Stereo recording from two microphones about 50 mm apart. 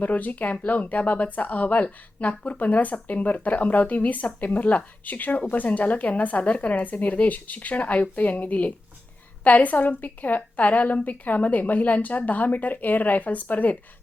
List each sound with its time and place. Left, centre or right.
0.0 s speech: left